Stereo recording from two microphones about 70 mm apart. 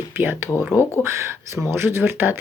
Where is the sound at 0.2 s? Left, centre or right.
Right.